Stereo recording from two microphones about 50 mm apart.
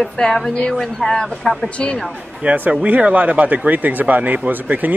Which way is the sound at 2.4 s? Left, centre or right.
Right.